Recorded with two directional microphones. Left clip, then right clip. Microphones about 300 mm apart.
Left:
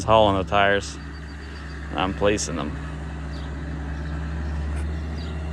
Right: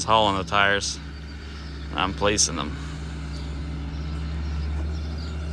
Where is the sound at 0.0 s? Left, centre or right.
Centre.